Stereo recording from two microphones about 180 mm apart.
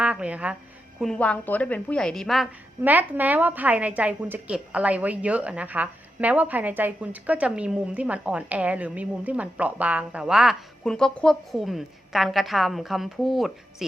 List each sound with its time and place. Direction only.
0.0 s a woman's voice: 5° right (ahead or behind)